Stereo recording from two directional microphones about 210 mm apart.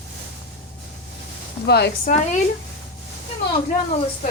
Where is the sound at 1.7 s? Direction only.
50° left (ahead or behind).